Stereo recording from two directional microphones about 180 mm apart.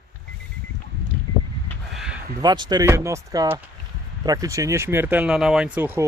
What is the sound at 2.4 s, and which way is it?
Speech, 20° right (ahead or behind).